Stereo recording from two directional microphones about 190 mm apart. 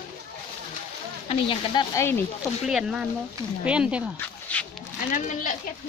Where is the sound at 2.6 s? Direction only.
5° right (ahead or behind).